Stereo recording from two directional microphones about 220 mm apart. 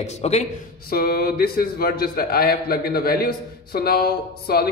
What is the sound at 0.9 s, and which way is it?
A man's voice, 45° left (ahead or behind).